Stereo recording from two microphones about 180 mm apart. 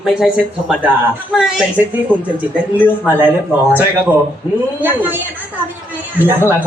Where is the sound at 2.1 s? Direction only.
10° left (ahead or behind).